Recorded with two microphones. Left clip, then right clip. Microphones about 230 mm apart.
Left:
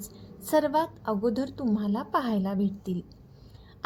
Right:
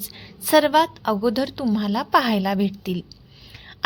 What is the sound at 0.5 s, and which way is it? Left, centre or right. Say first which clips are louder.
Speech: right 8 dB; right.